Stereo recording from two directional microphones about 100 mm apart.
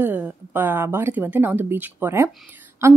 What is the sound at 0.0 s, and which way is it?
A woman's voice, 20° right (ahead or behind).